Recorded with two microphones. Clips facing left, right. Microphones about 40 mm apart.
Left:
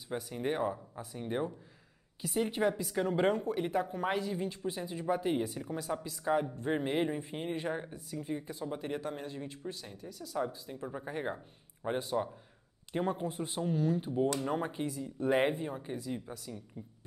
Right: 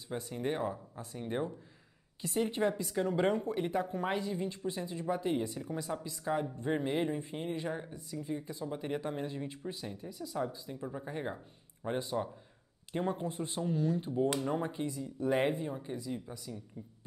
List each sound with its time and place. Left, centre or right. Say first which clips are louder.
0.3 s speech: left 2 dB; centre
3.3 s speech: even; centre
3.6 s speech: left 1 dB; centre
4.8 s speech: left 2 dB; left
8.7 s speech: right 2 dB; centre
10.3 s speech: left 2 dB; centre